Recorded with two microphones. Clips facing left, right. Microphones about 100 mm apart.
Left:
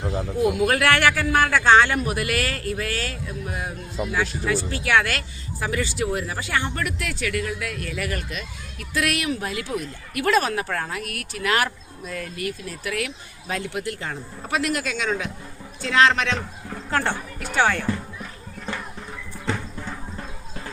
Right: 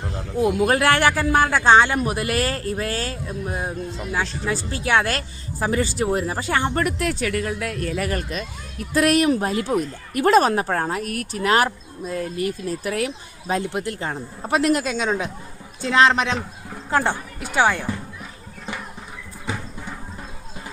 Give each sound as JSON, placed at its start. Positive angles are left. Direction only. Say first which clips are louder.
{"t": 0.0, "sound": "a sound", "louder": "left 5 dB", "side_deg": 5}
{"t": 0.3, "sound": "a man's voice", "louder": "right 2 dB", "side_deg": -30}
{"t": 17.2, "sound": "music", "louder": "right 2 dB", "side_deg": -10}